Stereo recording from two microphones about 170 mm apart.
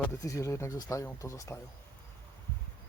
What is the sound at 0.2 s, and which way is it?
Speech, 20° left (ahead or behind).